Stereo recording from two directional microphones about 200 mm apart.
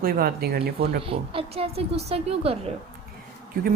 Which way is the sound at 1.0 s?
25° right (ahead or behind).